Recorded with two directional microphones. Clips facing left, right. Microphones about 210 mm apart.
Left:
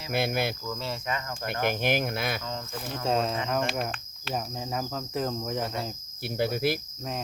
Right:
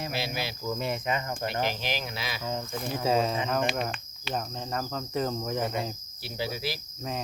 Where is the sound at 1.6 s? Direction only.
55° left (ahead or behind).